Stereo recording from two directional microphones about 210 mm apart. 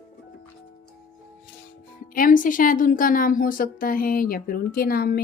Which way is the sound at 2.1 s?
40° left (ahead or behind).